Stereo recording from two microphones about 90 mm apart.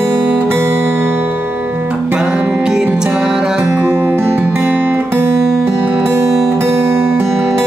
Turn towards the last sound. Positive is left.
turn(degrees=-25)  # may be behind; listen again after turning